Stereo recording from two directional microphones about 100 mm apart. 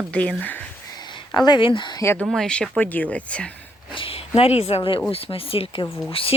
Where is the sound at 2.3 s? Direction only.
5° left (ahead or behind).